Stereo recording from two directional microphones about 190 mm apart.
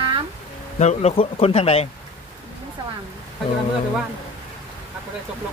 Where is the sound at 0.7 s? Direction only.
35° left (ahead or behind).